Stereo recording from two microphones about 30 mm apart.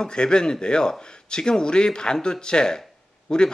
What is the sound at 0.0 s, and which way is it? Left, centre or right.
A man's voice, left.